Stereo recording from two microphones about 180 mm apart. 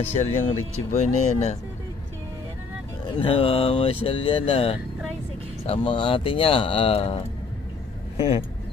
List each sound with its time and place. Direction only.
0.1 s speech: 40° left (ahead or behind)
3.2 s speech: 30° left (ahead or behind)
8.2 s speech: 30° left (ahead or behind)